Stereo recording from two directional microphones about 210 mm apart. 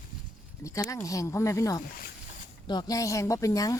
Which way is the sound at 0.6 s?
15° left (ahead or behind).